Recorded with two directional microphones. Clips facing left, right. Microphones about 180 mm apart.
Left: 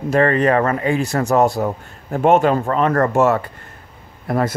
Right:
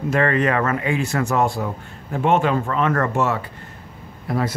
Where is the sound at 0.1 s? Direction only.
35° left (ahead or behind).